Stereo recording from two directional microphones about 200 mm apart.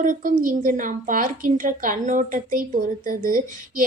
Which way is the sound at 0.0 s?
40° right (ahead or behind).